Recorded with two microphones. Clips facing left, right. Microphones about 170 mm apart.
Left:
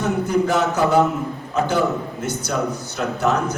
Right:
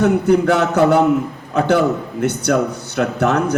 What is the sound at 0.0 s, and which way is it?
A man's voice, 65° right (ahead or behind).